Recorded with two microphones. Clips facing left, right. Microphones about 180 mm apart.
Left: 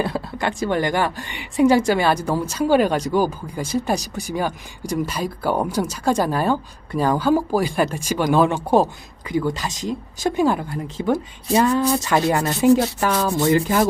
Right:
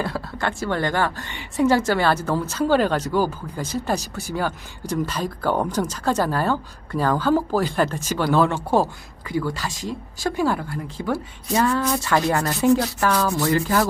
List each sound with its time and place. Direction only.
0.0 s speech: 15° left (ahead or behind)
11.8 s speech: 35° left (ahead or behind)
12.0 s speech: 15° left (ahead or behind)